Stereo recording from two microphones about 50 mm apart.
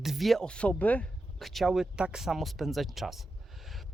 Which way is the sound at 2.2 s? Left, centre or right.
Centre.